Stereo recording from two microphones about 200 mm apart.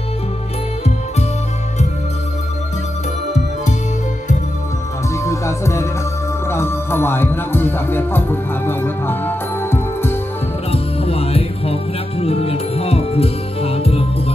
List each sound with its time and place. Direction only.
5.1 s music: 15° left (ahead or behind)
10.7 s music: 30° left (ahead or behind)